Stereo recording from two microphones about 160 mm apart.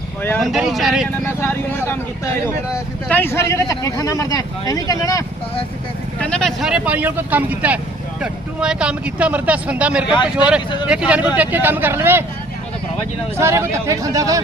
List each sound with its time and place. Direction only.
0.2 s speech: 10° left (ahead or behind)
0.5 s speech: centre (ahead or behind)
1.4 s speech: 15° left (ahead or behind)
3.1 s speech: 15° left (ahead or behind)
6.1 s speech: 5° left (ahead or behind); by 12.2 s 15° right (ahead or behind)
13.4 s speech: 15° right (ahead or behind)